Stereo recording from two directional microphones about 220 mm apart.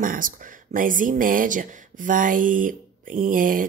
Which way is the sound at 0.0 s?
40° right (ahead or behind).